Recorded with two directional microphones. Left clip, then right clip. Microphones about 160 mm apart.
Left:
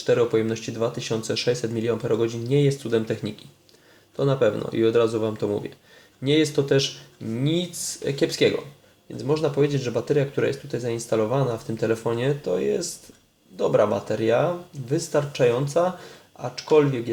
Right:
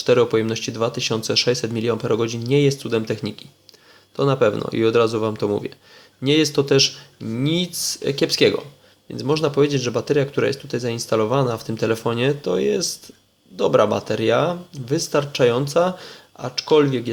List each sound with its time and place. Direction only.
0.0 s speech: 35° right (ahead or behind)